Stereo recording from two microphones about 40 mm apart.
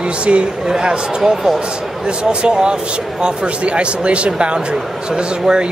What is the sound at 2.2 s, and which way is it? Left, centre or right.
A man's voice, right.